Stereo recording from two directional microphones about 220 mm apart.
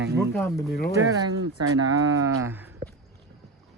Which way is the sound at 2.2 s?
75° right (ahead or behind).